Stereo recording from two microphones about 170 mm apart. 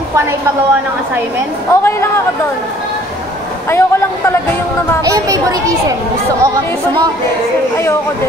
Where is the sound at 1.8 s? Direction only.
15° left (ahead or behind).